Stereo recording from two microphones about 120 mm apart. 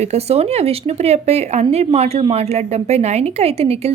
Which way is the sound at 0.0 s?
60° right (ahead or behind).